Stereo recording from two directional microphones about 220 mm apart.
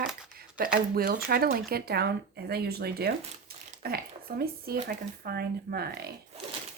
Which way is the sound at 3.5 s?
45° right (ahead or behind).